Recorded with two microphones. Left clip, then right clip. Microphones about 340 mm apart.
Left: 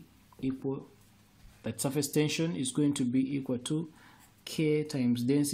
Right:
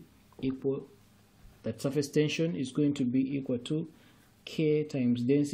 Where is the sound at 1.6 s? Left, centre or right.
Centre.